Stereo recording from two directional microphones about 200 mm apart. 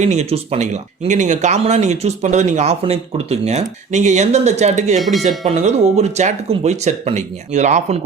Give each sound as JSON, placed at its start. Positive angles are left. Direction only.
{"t": 0.0, "sound": "speech", "side_deg": -35}
{"t": 4.9, "sound": "speech", "side_deg": 0}
{"t": 5.5, "sound": "speech", "side_deg": -35}